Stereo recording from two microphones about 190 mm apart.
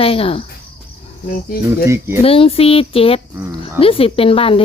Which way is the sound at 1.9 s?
10° right (ahead or behind).